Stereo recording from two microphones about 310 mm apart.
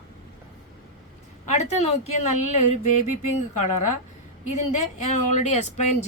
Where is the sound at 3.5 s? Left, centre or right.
Left.